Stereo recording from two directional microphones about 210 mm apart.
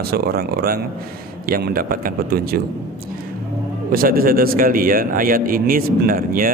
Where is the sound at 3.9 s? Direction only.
45° right (ahead or behind).